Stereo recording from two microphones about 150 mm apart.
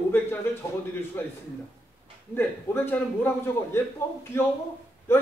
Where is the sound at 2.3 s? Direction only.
15° left (ahead or behind).